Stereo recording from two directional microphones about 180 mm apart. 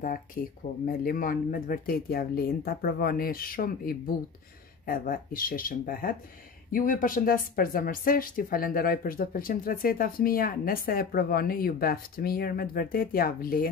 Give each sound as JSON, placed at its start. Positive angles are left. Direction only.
{"t": 0.0, "sound": "speech", "side_deg": 50}